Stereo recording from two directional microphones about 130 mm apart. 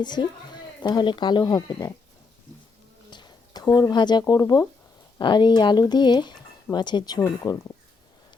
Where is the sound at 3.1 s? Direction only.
35° left (ahead or behind).